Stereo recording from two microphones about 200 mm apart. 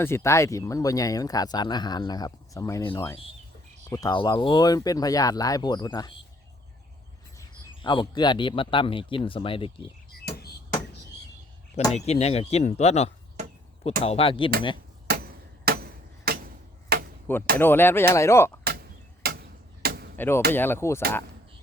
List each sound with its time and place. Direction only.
0.0 s speech: 15° left (ahead or behind)
7.3 s speech: 25° left (ahead or behind)
10.2 s frog: 50° left (ahead or behind)
11.9 s speech: 35° left (ahead or behind)
15.0 s a sound: 50° right (ahead or behind)
16.9 s chop: 50° right (ahead or behind)
17.6 s speech: 10° left (ahead or behind)
18.6 s a sound: 50° right (ahead or behind)
20.1 s speech: 10° left (ahead or behind)